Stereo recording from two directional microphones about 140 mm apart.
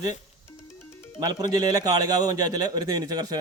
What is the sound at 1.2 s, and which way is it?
A man's voice, 30° right (ahead or behind).